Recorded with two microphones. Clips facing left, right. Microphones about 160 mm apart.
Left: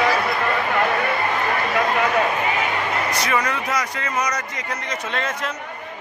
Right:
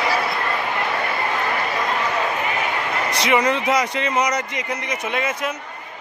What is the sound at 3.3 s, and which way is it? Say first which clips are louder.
Speech: right 9 dB; 20° right (ahead or behind).